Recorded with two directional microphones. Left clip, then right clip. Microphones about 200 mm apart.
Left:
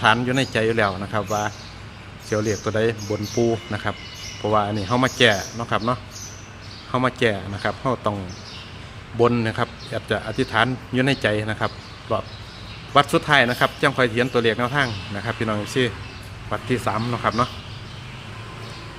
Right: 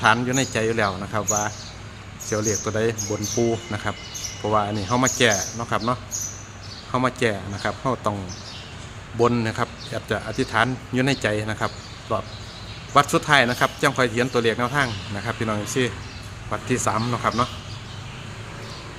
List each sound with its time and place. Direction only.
0.0 s speech: 10° left (ahead or behind)
9.1 s speech: 10° left (ahead or behind)